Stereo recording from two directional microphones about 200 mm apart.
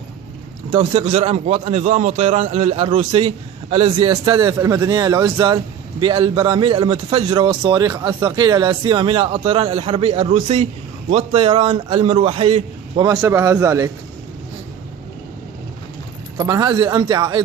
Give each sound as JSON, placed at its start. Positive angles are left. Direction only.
{"t": 0.7, "sound": "a man's voice", "side_deg": -25}
{"t": 4.1, "sound": "speech", "side_deg": -20}
{"t": 16.3, "sound": "speech", "side_deg": -20}